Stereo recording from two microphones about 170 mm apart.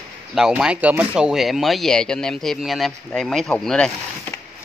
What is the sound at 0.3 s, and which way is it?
Speech, centre (ahead or behind).